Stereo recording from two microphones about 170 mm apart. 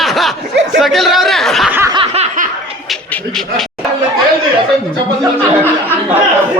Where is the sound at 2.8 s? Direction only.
5° left (ahead or behind).